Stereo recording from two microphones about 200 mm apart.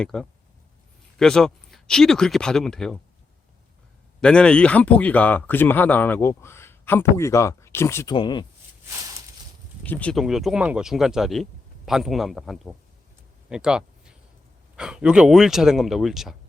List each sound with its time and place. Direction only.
0.0 s speech: centre (ahead or behind)
4.2 s speech: 5° left (ahead or behind)
8.1 s speech: 25° left (ahead or behind)
9.8 s speech: 5° left (ahead or behind)